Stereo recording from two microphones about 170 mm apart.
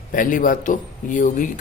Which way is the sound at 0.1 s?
50° left (ahead or behind).